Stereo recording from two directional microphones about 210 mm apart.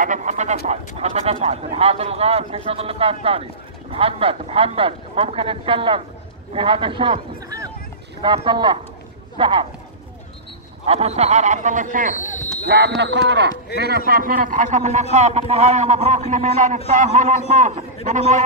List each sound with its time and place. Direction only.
0.0 s a sound: 35° right (ahead or behind)
0.7 s speech: 30° right (ahead or behind)
10.9 s a man's voice: 30° right (ahead or behind)
12.2 s speech: 35° left (ahead or behind)
12.6 s a man's voice: 50° right (ahead or behind); by 17.8 s 35° right (ahead or behind)